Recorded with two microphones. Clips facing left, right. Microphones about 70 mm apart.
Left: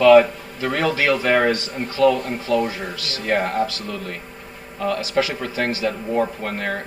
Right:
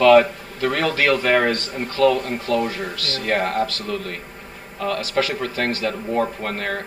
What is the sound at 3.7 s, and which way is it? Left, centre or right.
Speech, right.